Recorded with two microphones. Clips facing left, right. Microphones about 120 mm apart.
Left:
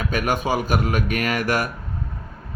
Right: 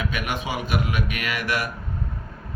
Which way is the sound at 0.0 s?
40° left (ahead or behind).